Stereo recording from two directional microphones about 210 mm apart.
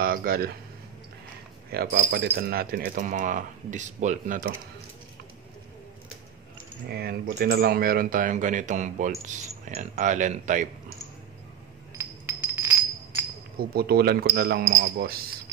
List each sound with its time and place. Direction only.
0.0 s speech: 45° right (ahead or behind)
1.7 s speech: 50° right (ahead or behind)
6.9 s speech: 45° right (ahead or behind)
12.0 s glass: 10° right (ahead or behind)
13.6 s speech: 45° right (ahead or behind)